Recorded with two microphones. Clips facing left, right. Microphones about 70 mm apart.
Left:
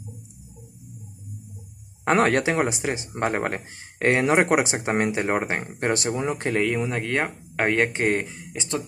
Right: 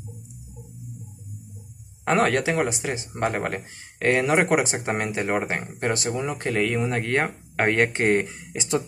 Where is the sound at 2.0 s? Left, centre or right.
Left.